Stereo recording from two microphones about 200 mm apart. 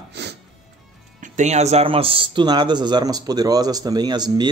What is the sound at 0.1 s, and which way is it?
Music, 60° right (ahead or behind).